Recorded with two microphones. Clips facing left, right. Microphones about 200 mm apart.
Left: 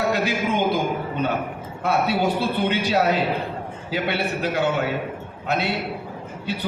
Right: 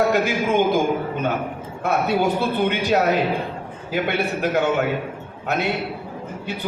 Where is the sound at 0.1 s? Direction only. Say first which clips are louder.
Right 3 dB; 50° right (ahead or behind).